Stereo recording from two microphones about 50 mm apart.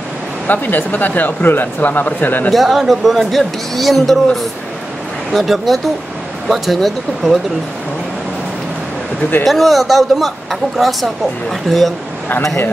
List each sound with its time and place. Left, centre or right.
0.5 s speech: left
2.5 s speech: centre
9.4 s speech: centre